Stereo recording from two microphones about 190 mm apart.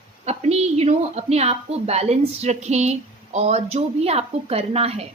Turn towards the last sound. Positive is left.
turn(degrees=-30)  # may be behind; listen again after turning